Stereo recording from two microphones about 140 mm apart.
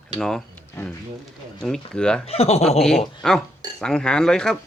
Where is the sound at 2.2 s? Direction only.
45° left (ahead or behind).